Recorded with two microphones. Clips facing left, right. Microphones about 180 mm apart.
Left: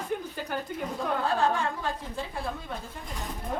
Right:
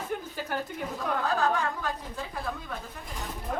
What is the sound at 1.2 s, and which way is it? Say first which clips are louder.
Speech: even; 30° left (ahead or behind).